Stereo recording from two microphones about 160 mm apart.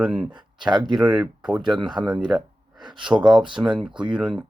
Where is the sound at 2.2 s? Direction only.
5° right (ahead or behind).